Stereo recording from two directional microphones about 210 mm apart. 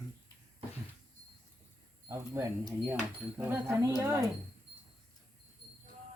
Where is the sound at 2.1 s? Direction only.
15° right (ahead or behind).